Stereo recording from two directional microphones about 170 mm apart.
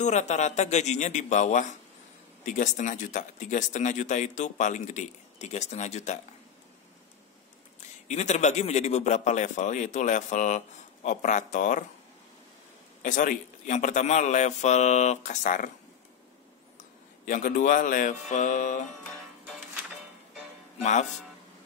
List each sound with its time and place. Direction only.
0.0 s speech: 45° left (ahead or behind)
8.1 s speech: 40° left (ahead or behind)
13.0 s speech: 50° left (ahead or behind)
17.2 s speech: 50° left (ahead or behind)
20.8 s speech: 45° left (ahead or behind)